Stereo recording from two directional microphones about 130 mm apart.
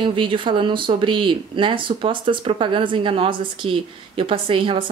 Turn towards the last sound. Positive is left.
turn(degrees=-40)  # may be behind; listen again after turning